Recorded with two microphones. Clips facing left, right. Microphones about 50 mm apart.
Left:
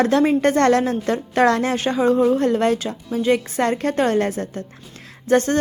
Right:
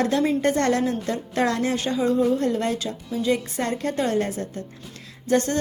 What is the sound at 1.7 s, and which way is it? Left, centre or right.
A woman's voice, left.